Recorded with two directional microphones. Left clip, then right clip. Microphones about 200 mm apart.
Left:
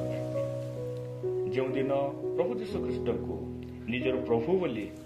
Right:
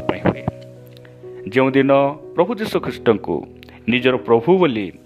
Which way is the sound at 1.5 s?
45° right (ahead or behind).